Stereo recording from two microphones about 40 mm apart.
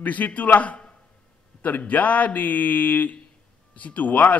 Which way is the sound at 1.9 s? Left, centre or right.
Left.